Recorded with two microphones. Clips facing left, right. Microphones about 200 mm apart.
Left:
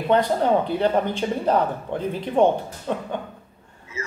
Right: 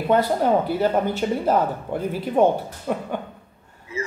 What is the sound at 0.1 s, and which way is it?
A man's voice, 5° right (ahead or behind).